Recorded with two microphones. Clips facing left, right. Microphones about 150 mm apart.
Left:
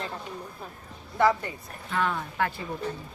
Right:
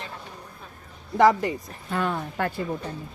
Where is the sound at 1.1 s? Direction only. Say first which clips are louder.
Right 5 dB; 90° right.